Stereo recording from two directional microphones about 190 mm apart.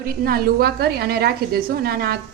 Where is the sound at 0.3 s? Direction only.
55° right (ahead or behind).